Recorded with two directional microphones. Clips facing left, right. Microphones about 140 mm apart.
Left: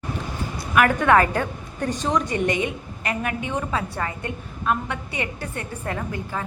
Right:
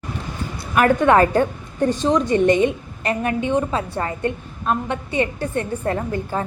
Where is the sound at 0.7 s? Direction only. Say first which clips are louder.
Right 3 dB; 30° right (ahead or behind).